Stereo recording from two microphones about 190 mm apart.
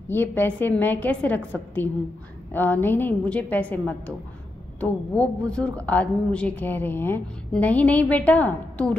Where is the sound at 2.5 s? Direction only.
10° left (ahead or behind).